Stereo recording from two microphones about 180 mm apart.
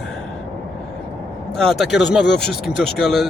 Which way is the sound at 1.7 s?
Centre (ahead or behind).